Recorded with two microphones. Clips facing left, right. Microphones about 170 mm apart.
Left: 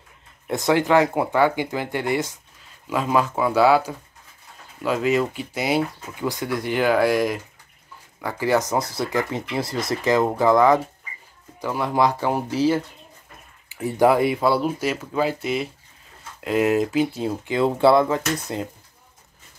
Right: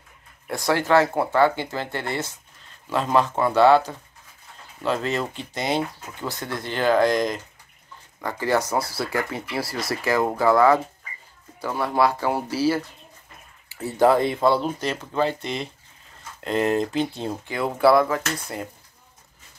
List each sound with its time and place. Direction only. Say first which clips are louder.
0.5 s speech: left 2 dB; 20° left (ahead or behind)
17.5 s speech: left 2 dB; 25° left (ahead or behind)